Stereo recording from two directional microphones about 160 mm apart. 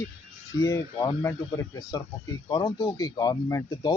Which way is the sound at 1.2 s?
15° left (ahead or behind).